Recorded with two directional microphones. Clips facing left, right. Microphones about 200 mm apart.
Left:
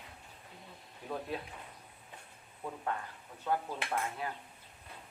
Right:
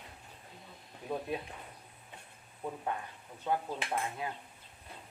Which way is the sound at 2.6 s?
15° right (ahead or behind).